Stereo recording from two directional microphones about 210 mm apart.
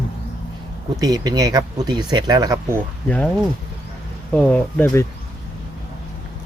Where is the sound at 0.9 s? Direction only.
20° right (ahead or behind).